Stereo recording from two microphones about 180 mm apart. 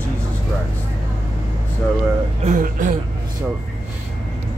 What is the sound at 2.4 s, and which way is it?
Speech, 45° right (ahead or behind).